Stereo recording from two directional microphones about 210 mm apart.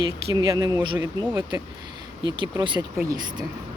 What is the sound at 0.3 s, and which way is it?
Speech, 15° right (ahead or behind).